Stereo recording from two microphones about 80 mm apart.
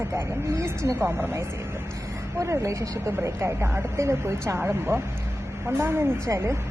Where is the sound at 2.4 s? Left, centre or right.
Right.